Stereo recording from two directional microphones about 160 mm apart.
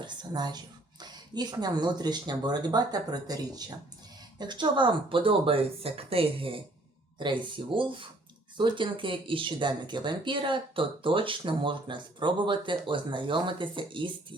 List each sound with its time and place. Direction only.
0.0 s speech: 25° right (ahead or behind)